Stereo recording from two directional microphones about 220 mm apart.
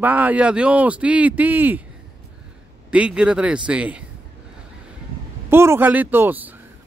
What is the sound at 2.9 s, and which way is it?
A man's voice, 5° right (ahead or behind).